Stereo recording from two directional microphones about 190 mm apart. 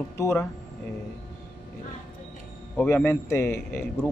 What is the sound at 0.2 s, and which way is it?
Speech, 15° left (ahead or behind).